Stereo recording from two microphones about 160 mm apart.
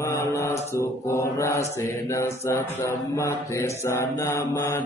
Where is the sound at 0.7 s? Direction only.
20° left (ahead or behind).